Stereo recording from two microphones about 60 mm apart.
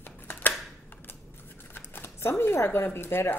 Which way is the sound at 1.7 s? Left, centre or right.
Left.